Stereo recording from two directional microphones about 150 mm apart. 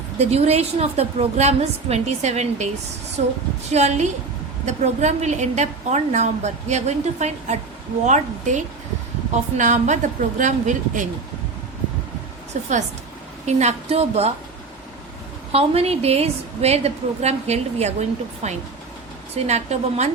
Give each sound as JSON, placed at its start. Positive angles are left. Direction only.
{"t": 0.2, "sound": "a woman's voice", "side_deg": -45}
{"t": 12.5, "sound": "a woman's voice", "side_deg": -55}
{"t": 15.5, "sound": "a woman's voice", "side_deg": -40}